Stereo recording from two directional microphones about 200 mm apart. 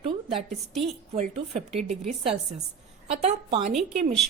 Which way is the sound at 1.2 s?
30° right (ahead or behind).